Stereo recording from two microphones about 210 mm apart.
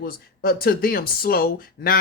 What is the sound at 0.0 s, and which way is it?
Speech, 45° left (ahead or behind).